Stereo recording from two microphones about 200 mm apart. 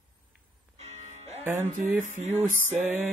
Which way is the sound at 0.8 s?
35° right (ahead or behind).